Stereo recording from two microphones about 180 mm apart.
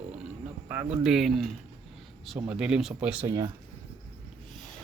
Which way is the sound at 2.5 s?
5° right (ahead or behind).